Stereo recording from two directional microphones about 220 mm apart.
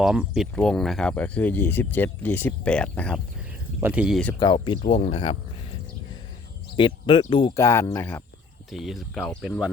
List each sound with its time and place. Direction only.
0.0 s speech: centre (ahead or behind)
3.8 s speech: 10° right (ahead or behind)
4.4 s speech: 20° left (ahead or behind)
6.7 s speech: 20° left (ahead or behind)
8.7 s speech: centre (ahead or behind)